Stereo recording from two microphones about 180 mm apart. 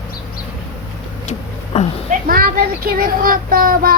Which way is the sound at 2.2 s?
55° right (ahead or behind).